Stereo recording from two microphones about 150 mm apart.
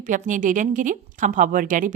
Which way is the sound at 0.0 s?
60° right (ahead or behind).